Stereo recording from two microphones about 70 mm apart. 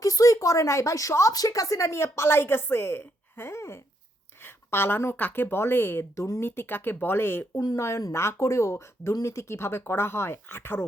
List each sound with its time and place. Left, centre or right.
0.0 s speech: left
1.3 s a woman's voice: left